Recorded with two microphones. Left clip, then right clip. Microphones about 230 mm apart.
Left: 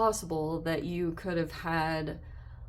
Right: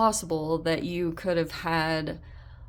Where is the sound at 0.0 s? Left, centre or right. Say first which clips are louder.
Right 4 dB; right.